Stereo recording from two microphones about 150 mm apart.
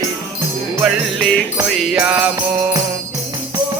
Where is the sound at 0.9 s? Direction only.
5° left (ahead or behind).